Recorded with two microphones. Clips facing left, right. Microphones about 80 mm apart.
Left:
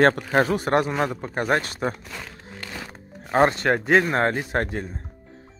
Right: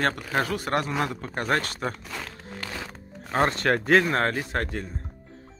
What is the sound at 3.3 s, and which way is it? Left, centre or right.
Speech, left.